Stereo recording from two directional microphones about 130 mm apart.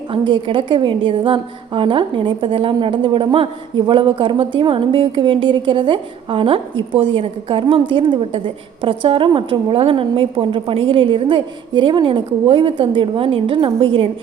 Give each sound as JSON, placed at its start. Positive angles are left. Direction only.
{"t": 0.1, "sound": "a woman's voice", "side_deg": -40}